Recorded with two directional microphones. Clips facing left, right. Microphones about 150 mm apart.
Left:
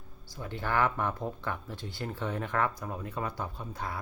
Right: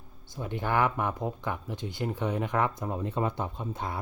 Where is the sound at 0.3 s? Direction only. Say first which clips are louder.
Right 3 dB; 20° right (ahead or behind).